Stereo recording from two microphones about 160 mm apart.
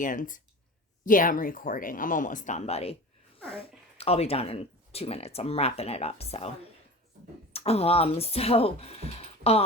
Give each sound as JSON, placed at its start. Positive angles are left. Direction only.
{"t": 0.0, "sound": "speech", "side_deg": 55}
{"t": 7.5, "sound": "speech", "side_deg": 40}